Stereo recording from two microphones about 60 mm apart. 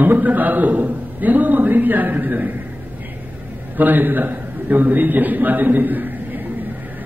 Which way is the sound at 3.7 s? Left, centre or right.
Right.